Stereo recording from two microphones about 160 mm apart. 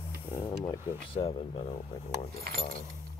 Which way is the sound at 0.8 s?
35° left (ahead or behind).